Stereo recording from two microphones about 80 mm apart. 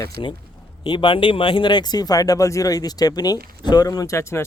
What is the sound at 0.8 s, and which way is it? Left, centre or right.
Speech, left.